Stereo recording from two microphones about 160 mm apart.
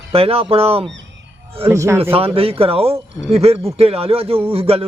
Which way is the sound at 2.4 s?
35° right (ahead or behind).